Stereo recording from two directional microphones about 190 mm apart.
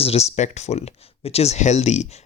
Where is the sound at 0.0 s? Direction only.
35° left (ahead or behind).